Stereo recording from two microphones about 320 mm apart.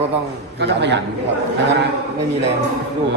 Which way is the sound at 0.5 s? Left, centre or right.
Right.